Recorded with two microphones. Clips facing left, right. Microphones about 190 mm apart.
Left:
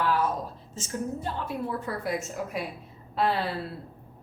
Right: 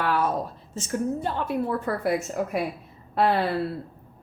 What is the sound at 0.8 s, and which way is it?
A woman's voice, 60° right (ahead or behind).